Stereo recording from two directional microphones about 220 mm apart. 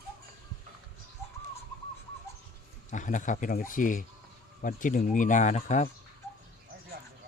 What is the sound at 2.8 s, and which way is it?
Speech, 35° left (ahead or behind).